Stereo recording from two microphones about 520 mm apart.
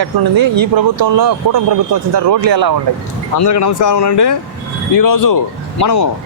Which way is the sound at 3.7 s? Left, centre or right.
Left.